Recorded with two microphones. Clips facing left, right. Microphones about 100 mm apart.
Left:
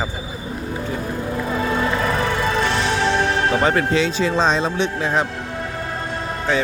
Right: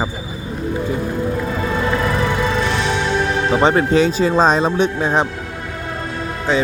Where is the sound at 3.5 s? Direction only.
25° right (ahead or behind).